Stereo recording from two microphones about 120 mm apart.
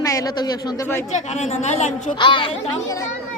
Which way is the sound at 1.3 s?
75° left (ahead or behind).